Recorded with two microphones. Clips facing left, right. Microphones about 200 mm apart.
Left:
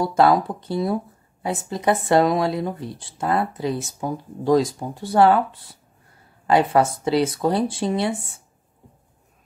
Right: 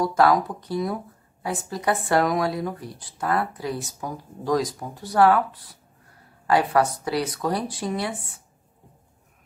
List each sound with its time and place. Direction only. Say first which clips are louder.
0.0 s speech: left 2 dB; 25° left (ahead or behind)